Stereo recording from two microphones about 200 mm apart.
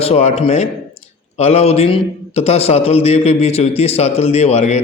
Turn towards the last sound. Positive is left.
turn(degrees=35)  # may be behind; listen again after turning